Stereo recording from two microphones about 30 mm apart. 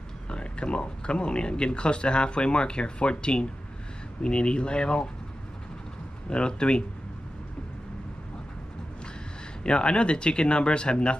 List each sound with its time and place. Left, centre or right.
0.3 s speech: left
6.2 s speech: left
9.6 s speech: left